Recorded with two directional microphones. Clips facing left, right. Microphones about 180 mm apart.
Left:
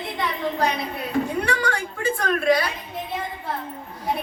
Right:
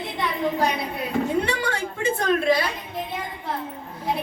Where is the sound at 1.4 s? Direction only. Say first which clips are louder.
Left 1 dB; 25° right (ahead or behind).